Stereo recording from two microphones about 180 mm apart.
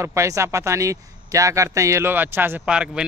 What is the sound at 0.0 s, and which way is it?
Speech, 15° right (ahead or behind).